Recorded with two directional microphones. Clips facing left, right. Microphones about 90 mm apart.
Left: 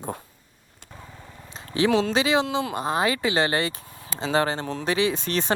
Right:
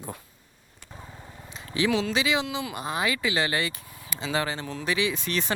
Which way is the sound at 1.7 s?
40° left (ahead or behind).